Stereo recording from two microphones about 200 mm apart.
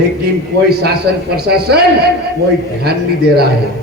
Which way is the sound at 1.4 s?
55° right (ahead or behind).